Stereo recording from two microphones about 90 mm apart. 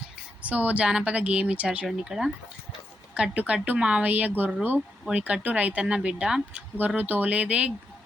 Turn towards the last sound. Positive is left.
turn(degrees=-15)  # may be behind; listen again after turning